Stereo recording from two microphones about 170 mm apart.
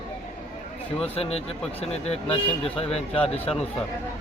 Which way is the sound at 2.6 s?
35° left (ahead or behind).